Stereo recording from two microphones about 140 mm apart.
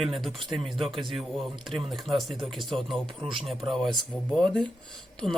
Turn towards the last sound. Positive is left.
turn(degrees=-35)  # may be behind; listen again after turning